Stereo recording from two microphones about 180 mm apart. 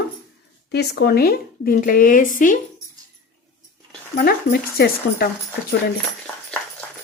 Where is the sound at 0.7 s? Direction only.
65° left (ahead or behind); by 2.6 s 45° left (ahead or behind).